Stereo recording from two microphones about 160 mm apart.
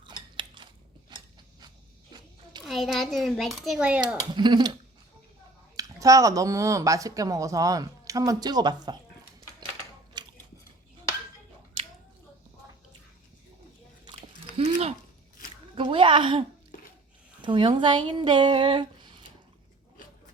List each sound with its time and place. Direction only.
0.0 s chewing: 30° right (ahead or behind)
1.1 s a sound: 25° right (ahead or behind)
2.6 s a child's voice: centre (ahead or behind)
4.3 s speech: 25° right (ahead or behind)
10.2 s biting: 25° right (ahead or behind)
14.0 s chewing: 35° right (ahead or behind)
15.7 s a sound: 35° right (ahead or behind)
17.4 s speech: 30° right (ahead or behind)